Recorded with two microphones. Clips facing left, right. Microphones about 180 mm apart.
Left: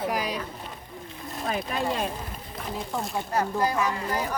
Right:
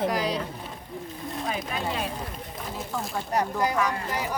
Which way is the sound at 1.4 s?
45° left (ahead or behind).